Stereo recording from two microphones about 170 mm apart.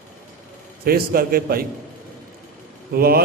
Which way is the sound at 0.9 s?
60° right (ahead or behind).